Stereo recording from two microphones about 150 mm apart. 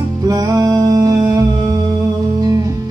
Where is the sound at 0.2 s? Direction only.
25° right (ahead or behind).